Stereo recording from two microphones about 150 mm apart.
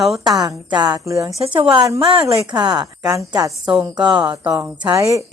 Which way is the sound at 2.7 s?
5° right (ahead or behind).